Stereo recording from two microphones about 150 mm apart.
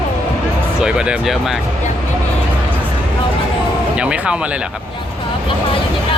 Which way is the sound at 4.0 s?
5° right (ahead or behind).